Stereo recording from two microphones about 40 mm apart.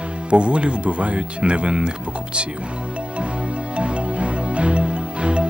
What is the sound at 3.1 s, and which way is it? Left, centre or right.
Music, right.